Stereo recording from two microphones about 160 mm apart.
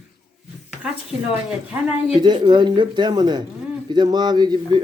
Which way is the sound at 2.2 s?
30° right (ahead or behind).